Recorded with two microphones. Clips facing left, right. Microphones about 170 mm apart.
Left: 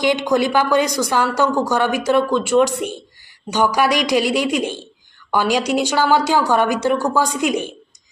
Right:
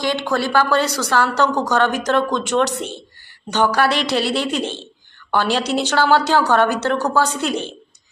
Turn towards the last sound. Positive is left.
turn(degrees=10)  # may be behind; listen again after turning